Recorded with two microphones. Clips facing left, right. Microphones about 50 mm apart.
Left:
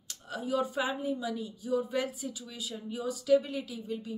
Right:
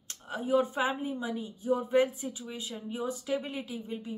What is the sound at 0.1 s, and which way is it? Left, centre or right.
Speech, right.